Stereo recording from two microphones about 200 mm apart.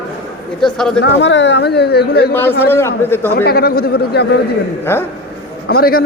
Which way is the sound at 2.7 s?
10° left (ahead or behind).